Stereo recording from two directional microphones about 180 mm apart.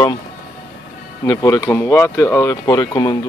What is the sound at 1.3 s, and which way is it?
Speech, 20° left (ahead or behind).